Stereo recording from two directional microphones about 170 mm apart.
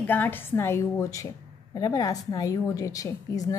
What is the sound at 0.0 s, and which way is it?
A woman's voice, 10° left (ahead or behind).